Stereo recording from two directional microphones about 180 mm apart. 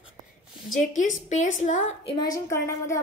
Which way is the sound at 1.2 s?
40° left (ahead or behind).